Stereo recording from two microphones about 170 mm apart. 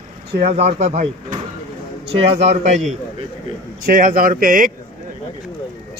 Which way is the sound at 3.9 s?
55° right (ahead or behind).